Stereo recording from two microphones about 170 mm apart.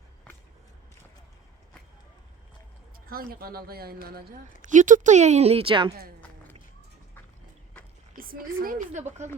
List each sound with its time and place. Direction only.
3.1 s speech: 60° right (ahead or behind)
4.6 s speech: 50° right (ahead or behind); by 5.9 s 30° right (ahead or behind)
8.1 s a woman's voice: 60° right (ahead or behind)